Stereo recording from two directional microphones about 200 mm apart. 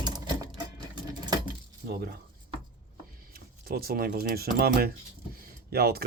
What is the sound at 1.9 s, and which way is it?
Speech, 50° right (ahead or behind).